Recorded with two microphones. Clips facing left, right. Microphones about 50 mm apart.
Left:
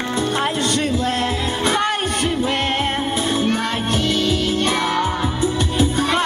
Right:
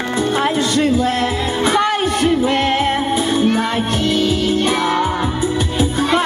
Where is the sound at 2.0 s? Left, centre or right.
Right.